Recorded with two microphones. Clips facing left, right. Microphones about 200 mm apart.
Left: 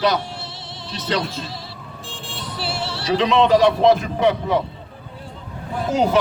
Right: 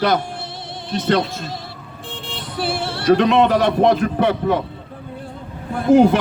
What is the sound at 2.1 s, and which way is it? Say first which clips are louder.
Vehicle: right 5 dB; 20° right (ahead or behind).